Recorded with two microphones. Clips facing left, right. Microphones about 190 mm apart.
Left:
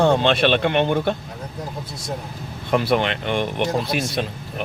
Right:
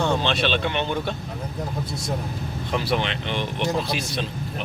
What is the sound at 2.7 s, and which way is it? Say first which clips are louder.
Speech: left 6 dB; 55° left (ahead or behind).